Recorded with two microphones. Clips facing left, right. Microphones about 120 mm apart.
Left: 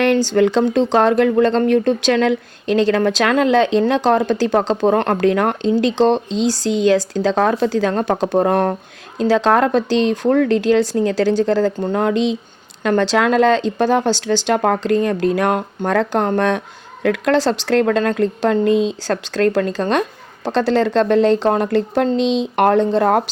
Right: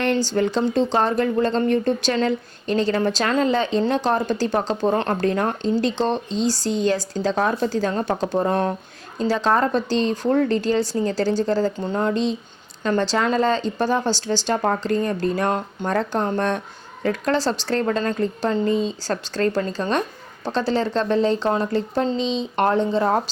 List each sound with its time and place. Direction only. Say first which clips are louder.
0.3 s speech: left 5 dB; 75° left (ahead or behind)
4.8 s speech: left 5 dB; 65° left (ahead or behind)
9.1 s speech: left 5 dB; 75° left (ahead or behind)